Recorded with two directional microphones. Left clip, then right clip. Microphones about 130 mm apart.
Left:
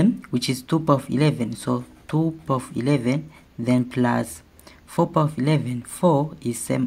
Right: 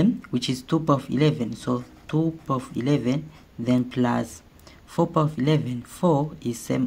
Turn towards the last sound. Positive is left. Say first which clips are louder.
# left 2 dB
turn(degrees=20)  # may be behind; listen again after turning